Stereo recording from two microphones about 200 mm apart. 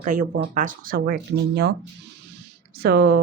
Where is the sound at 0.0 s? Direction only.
40° right (ahead or behind); by 1.7 s 55° right (ahead or behind).